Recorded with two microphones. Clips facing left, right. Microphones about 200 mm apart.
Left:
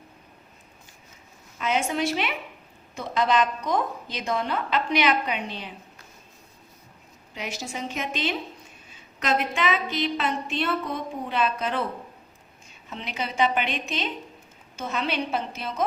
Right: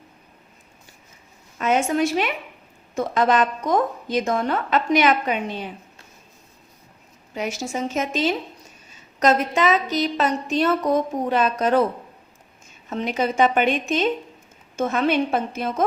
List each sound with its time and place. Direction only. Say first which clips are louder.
1.5 s a woman's voice: right 5 dB; 50° right (ahead or behind)
7.3 s a woman's voice: right 7 dB; 45° right (ahead or behind)
12.9 s a woman's voice: right 10 dB; 45° right (ahead or behind)